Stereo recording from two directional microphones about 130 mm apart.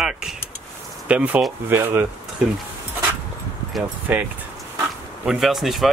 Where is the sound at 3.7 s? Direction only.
Centre (ahead or behind).